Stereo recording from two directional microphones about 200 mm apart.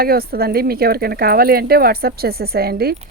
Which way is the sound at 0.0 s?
50° right (ahead or behind).